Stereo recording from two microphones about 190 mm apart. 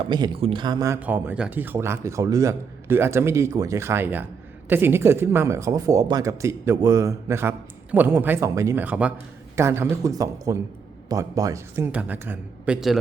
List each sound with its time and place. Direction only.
0.0 s speech: 25° right (ahead or behind)
0.9 s speech: 10° right (ahead or behind)